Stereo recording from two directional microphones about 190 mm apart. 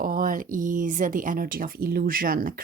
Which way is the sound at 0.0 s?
45° right (ahead or behind).